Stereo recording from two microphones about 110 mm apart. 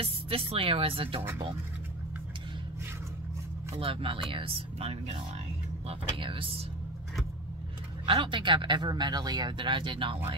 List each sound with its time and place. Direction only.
0.0 s speech: 60° right (ahead or behind)
3.7 s speech: 55° right (ahead or behind)
5.9 s speech: 55° right (ahead or behind)
8.0 s speech: 50° right (ahead or behind)